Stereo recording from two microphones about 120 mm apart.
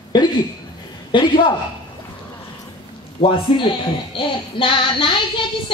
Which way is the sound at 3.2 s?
45° left (ahead or behind).